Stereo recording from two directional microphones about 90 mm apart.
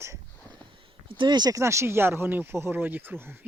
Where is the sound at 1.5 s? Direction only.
35° right (ahead or behind).